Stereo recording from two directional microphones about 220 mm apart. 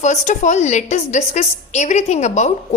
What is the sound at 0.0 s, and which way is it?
A woman's voice, 35° left (ahead or behind).